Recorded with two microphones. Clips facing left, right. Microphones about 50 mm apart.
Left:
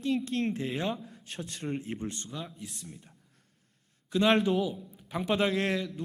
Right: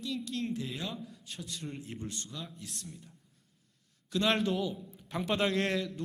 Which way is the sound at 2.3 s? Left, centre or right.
Centre.